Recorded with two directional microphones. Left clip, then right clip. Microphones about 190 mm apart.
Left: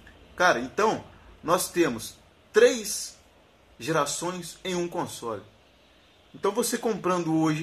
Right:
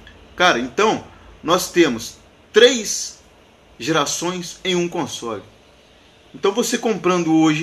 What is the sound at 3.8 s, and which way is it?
A man's voice, centre (ahead or behind).